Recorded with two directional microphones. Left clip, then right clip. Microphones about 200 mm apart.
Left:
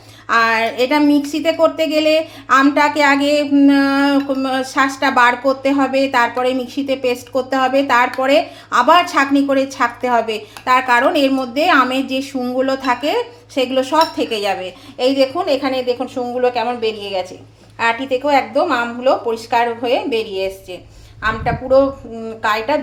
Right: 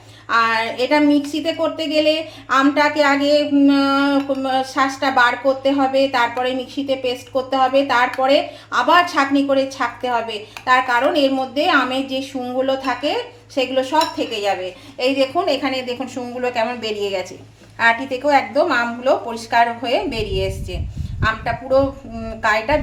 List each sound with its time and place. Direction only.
0.3 s a woman's voice: 30° left (ahead or behind); by 22.8 s 10° left (ahead or behind)